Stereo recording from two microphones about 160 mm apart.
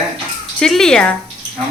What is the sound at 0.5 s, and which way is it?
Speech, 5° left (ahead or behind).